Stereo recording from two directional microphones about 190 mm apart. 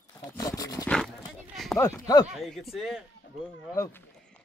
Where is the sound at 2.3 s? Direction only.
Centre (ahead or behind).